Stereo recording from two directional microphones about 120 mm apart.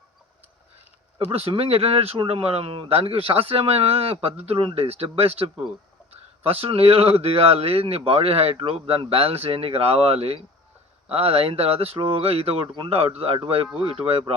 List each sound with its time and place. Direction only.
1.3 s speech: 55° right (ahead or behind)